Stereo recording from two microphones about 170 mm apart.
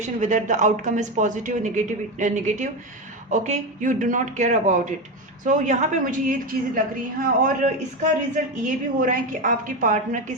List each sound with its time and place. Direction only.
0.0 s speech: 45° right (ahead or behind)